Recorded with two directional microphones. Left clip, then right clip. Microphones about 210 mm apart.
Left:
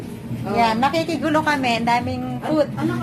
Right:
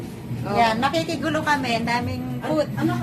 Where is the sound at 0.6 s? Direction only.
20° left (ahead or behind).